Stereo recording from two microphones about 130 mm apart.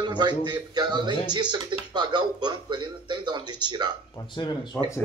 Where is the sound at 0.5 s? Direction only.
35° right (ahead or behind).